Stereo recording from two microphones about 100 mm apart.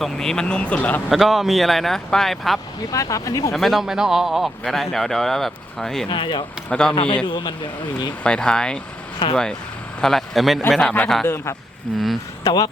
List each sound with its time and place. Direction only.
0.0 s speech: 5° left (ahead or behind)
1.1 s a man's voice: centre (ahead or behind)
2.9 s speech: 35° left (ahead or behind)
3.5 s a man's voice: centre (ahead or behind)
6.1 s speech: 55° left (ahead or behind)
6.7 s speech: 10° left (ahead or behind)
6.9 s a man's voice: 55° left (ahead or behind)
8.2 s a man's voice: 10° left (ahead or behind)